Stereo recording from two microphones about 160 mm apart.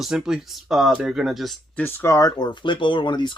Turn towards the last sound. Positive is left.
turn(degrees=30)  # may be behind; listen again after turning